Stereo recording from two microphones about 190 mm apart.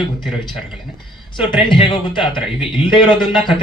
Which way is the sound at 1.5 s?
25° left (ahead or behind).